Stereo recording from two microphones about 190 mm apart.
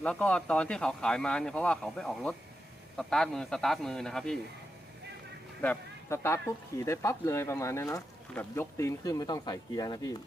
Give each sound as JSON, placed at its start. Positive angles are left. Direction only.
{"t": 0.0, "sound": "speech", "side_deg": 5}
{"t": 5.6, "sound": "speech", "side_deg": 15}